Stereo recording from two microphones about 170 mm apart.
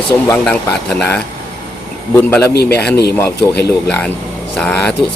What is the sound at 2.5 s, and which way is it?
Speech, 70° left (ahead or behind).